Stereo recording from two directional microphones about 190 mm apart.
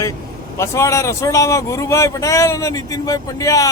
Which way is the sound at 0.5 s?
15° left (ahead or behind).